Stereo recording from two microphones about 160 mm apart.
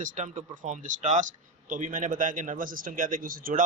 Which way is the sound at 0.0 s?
55° right (ahead or behind).